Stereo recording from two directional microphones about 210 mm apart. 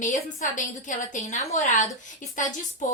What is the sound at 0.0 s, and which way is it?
Speech, 35° left (ahead or behind).